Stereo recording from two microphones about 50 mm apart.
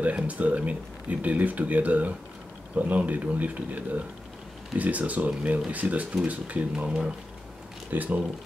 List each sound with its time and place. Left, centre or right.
0.3 s speech: right
7.9 s speech: right